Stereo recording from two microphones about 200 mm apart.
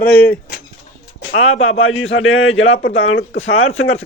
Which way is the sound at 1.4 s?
90° left.